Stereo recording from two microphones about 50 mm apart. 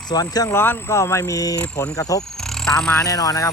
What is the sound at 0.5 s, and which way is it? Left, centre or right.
Speech, left.